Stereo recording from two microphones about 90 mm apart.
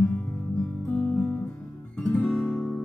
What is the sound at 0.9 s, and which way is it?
Music, 15° left (ahead or behind).